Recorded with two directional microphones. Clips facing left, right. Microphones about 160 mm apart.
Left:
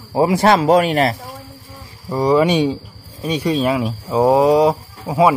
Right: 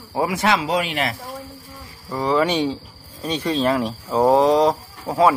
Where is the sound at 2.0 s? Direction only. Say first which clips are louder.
Left 5 dB; 15° left (ahead or behind).